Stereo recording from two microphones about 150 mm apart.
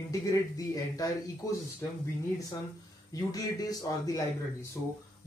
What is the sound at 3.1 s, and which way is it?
A man's voice, 25° left (ahead or behind).